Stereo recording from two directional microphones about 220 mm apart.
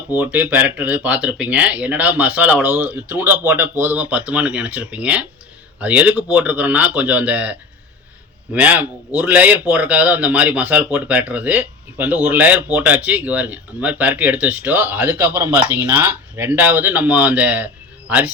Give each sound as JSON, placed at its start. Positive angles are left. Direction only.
{"t": 0.1, "sound": "a man's voice", "side_deg": -5}
{"t": 8.5, "sound": "a man's voice", "side_deg": -5}